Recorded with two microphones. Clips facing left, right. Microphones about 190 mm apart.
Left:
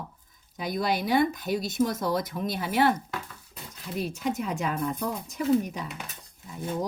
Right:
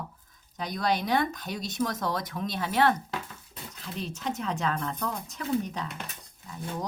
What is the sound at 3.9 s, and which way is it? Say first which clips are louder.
Speech: left 4 dB; 10° left (ahead or behind).